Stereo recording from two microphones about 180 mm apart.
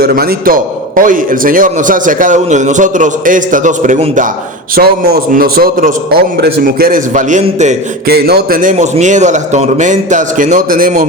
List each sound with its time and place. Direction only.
0.0 s a man's voice: 60° right (ahead or behind)
4.7 s a man's voice: 60° right (ahead or behind); by 7.8 s 40° right (ahead or behind)
8.0 s a man's voice: 60° right (ahead or behind)